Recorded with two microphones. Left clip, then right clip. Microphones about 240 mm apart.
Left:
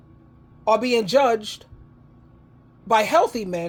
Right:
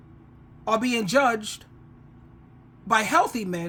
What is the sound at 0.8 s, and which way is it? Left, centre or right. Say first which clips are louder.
Speech: left 1 dB; centre.